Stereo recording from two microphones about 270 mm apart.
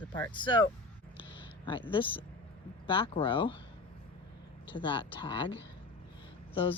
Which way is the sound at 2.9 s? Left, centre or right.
Centre.